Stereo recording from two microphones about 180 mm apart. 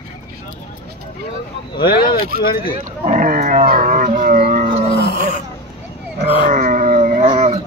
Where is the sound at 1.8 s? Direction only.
55° left (ahead or behind).